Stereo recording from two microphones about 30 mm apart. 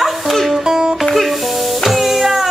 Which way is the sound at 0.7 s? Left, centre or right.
Right.